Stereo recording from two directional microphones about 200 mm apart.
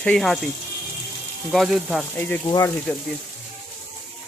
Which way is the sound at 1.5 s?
Centre (ahead or behind).